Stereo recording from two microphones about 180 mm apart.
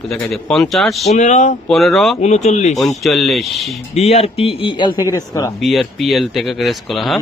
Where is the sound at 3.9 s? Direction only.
35° left (ahead or behind).